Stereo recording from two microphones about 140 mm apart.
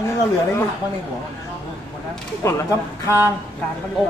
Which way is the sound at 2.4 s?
20° left (ahead or behind).